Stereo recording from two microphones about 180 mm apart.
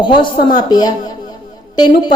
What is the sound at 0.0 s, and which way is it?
A woman's voice, 25° left (ahead or behind).